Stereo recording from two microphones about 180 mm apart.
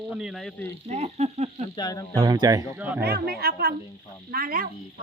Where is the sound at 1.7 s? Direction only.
20° left (ahead or behind).